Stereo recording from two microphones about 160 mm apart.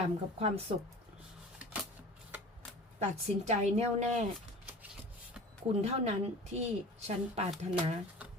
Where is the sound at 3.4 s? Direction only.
45° right (ahead or behind).